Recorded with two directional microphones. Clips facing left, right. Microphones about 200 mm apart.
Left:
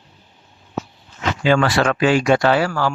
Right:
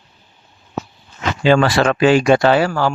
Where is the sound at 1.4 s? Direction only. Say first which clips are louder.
Right 3 dB; 30° right (ahead or behind).